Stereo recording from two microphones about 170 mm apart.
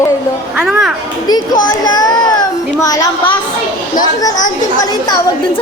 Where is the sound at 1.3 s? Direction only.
20° left (ahead or behind).